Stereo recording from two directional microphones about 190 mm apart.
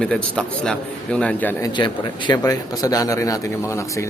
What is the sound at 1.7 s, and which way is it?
Speech, 25° left (ahead or behind).